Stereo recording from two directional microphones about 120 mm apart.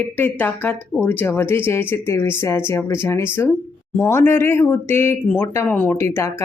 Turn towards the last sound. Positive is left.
turn(degrees=20)  # may be behind; listen again after turning